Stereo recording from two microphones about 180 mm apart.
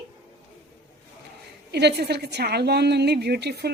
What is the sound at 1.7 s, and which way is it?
A woman's voice, 65° right (ahead or behind).